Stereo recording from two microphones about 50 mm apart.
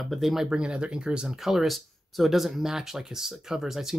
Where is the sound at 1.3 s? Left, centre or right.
Centre.